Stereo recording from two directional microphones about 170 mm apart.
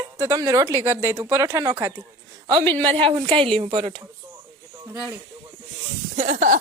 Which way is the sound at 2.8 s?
30° right (ahead or behind).